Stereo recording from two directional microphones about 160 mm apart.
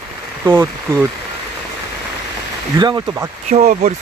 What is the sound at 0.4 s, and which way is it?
Speech, 15° right (ahead or behind).